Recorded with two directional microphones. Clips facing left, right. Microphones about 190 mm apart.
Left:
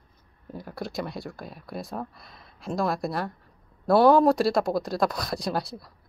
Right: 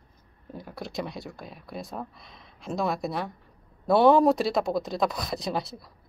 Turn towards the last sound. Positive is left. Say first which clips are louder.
# left 1 dB
turn(degrees=0)  # may be behind; listen again after turning